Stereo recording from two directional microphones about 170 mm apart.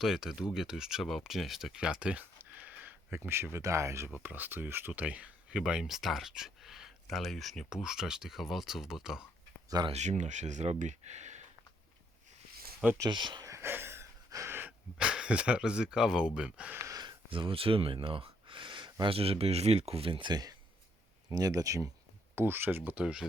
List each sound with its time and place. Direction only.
0.0 s speech: 5° right (ahead or behind)
9.6 s speech: 25° right (ahead or behind)
9.9 s speech: 45° right (ahead or behind)
12.8 s speech: 10° right (ahead or behind)
13.1 s gasp: 25° right (ahead or behind)
19.1 s speech: 35° right (ahead or behind); by 23.2 s 5° right (ahead or behind)